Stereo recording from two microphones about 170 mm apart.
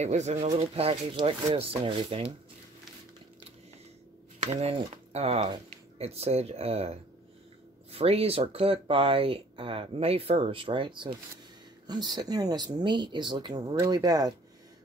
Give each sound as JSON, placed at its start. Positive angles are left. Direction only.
{"t": 0.0, "sound": "speech", "side_deg": -40}
{"t": 4.5, "sound": "speech", "side_deg": -40}